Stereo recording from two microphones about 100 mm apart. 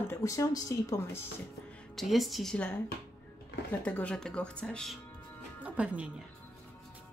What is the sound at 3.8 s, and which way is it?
Speech, 15° left (ahead or behind).